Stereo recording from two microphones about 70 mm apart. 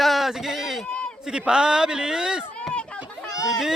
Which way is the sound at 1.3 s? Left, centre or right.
Centre.